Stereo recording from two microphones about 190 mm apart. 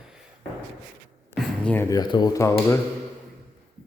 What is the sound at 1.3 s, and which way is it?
Speech, 5° left (ahead or behind).